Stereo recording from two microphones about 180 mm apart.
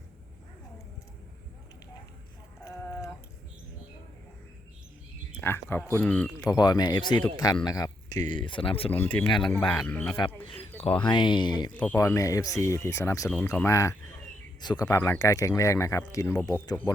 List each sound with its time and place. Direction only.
2.6 s a sound: 15° left (ahead or behind)
5.4 s speech: 15° left (ahead or behind)
6.5 s speech: 20° left (ahead or behind)
8.9 s speech: 10° left (ahead or behind)
10.4 s speech: 30° left (ahead or behind)
13.2 s speech: 5° left (ahead or behind)
13.5 s speech: 15° left (ahead or behind)